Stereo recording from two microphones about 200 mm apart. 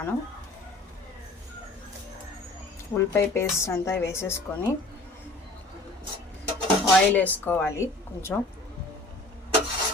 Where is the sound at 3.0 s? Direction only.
15° left (ahead or behind).